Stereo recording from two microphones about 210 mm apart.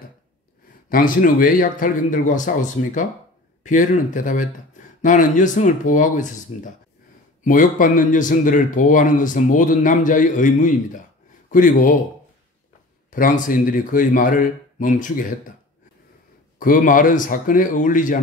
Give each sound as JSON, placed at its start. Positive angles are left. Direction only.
{"t": 0.8, "sound": "speech", "side_deg": 40}
{"t": 13.1, "sound": "speech", "side_deg": 40}
{"t": 16.5, "sound": "speech", "side_deg": 40}